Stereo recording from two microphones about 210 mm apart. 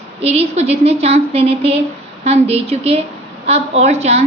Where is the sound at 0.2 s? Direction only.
30° right (ahead or behind).